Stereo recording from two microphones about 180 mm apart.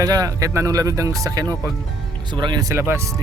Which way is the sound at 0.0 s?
20° right (ahead or behind).